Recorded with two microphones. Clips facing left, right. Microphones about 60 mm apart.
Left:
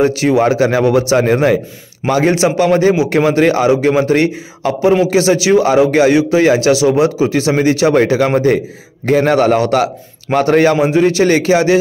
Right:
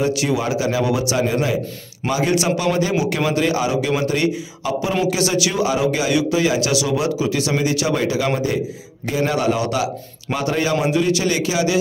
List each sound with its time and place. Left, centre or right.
0.0 s a man's voice: left